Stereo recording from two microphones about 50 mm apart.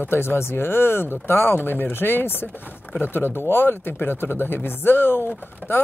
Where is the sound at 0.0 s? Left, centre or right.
Left.